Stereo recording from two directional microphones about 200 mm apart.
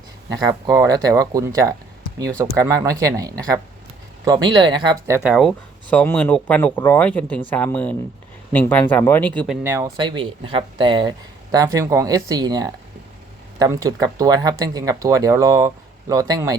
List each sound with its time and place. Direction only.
0.3 s speech: 15° right (ahead or behind)
5.3 s speech: centre (ahead or behind)
9.6 s speech: 15° right (ahead or behind)